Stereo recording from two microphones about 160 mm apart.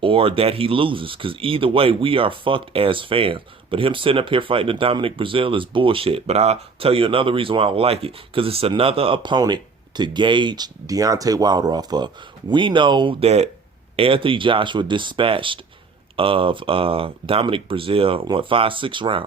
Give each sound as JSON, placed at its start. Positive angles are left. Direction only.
{"t": 0.0, "sound": "speech", "side_deg": -35}